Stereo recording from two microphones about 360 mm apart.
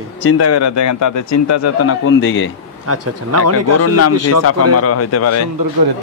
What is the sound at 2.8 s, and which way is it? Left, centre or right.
Speech, right.